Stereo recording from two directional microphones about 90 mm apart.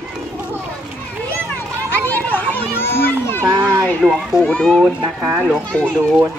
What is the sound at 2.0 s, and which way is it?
Children playing, 20° left (ahead or behind).